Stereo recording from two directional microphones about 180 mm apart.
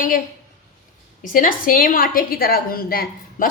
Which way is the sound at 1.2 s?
50° left (ahead or behind).